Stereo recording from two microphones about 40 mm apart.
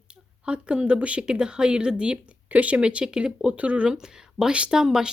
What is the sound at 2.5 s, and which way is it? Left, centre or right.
Speech, right.